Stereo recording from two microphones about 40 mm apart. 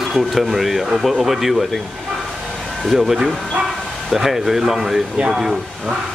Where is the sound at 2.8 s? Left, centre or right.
Centre.